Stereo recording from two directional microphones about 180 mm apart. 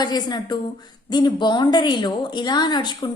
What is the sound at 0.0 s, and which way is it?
A woman's voice, 25° left (ahead or behind).